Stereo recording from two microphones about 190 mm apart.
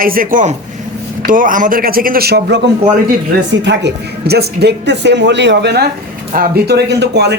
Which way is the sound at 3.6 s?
65° right (ahead or behind).